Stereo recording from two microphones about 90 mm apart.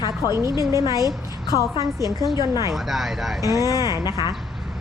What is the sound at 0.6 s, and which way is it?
A woman's voice, 35° right (ahead or behind).